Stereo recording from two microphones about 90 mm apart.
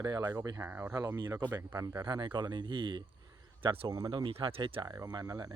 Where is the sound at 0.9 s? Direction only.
40° right (ahead or behind).